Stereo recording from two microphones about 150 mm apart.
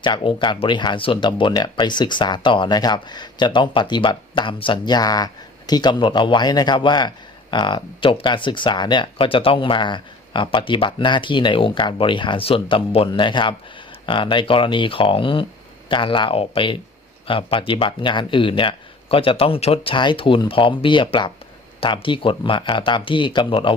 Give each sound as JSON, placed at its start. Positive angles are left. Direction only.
{"t": 0.0, "sound": "speech", "side_deg": 35}